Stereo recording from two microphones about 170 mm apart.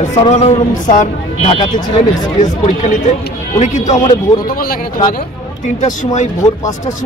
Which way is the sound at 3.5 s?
45° left (ahead or behind).